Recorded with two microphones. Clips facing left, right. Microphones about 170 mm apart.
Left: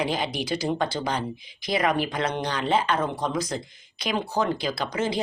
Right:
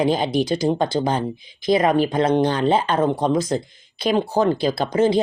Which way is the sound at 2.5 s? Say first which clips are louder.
Right 6 dB; 45° right (ahead or behind).